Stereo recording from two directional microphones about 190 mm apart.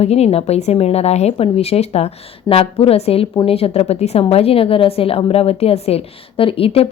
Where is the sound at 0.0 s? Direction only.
35° left (ahead or behind).